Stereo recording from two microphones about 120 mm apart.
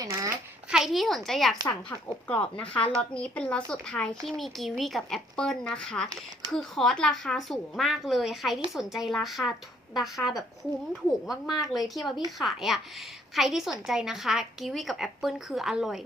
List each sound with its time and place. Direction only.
0.0 s a sound: 30° right (ahead or behind)
0.7 s speech: centre (ahead or behind)
1.6 s speech: 10° left (ahead or behind)
11.6 s speech: centre (ahead or behind)